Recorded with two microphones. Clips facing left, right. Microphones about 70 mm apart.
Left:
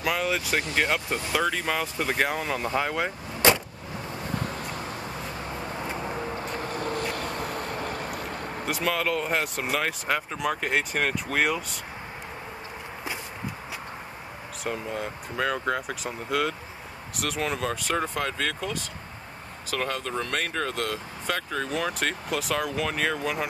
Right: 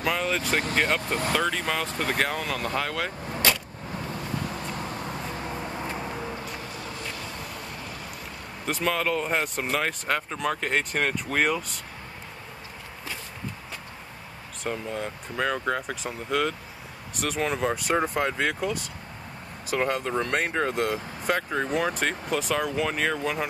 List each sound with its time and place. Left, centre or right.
0.0 s speech: centre
1.0 s speech: right
1.3 s speech: centre
4.4 s vehicle: left
5.9 s vehicle: centre
6.3 s vehicle: left
8.6 s speech: centre
14.6 s speech: centre
17.6 s speech: centre
21.6 s speech: centre